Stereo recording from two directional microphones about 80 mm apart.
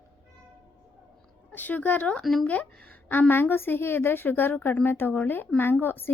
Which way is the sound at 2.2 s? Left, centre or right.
Centre.